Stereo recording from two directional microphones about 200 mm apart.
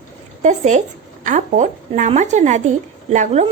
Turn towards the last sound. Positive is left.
turn(degrees=-35)  # may be behind; listen again after turning